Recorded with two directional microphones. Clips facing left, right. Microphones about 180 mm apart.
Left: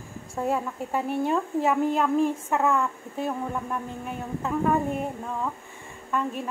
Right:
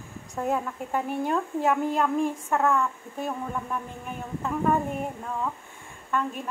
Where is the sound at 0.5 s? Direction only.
5° left (ahead or behind).